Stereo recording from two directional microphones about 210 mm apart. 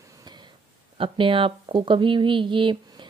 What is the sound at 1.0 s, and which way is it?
Speech, 25° right (ahead or behind).